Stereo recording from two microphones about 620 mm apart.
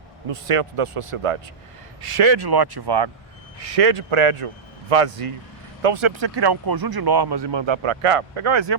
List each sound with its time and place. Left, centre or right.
0.3 s speech: right
3.6 s speech: right